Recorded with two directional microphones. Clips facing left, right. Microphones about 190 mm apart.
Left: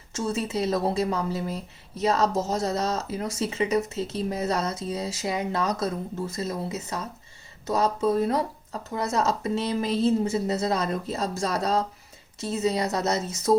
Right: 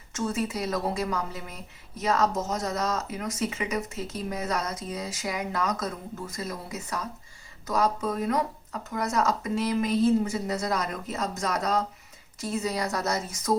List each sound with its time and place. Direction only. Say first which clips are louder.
0.1 s speech: left 1 dB; 25° left (ahead or behind)